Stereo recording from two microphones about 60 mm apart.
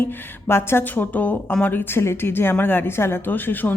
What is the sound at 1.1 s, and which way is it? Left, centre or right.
A woman's voice, left.